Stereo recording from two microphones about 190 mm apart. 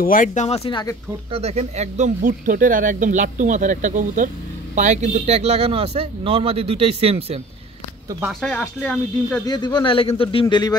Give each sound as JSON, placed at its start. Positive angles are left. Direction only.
{"t": 0.0, "sound": "speech", "side_deg": 45}
{"t": 0.7, "sound": "speech", "side_deg": 25}
{"t": 1.3, "sound": "speech", "side_deg": -35}
{"t": 8.3, "sound": "speech", "side_deg": 5}
{"t": 9.8, "sound": "speech", "side_deg": 30}